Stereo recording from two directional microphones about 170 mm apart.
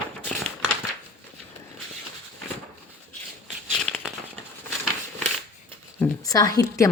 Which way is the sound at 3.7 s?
Centre (ahead or behind).